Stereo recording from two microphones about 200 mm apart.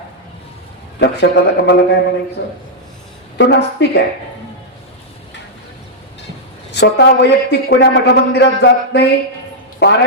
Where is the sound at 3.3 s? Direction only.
60° left (ahead or behind).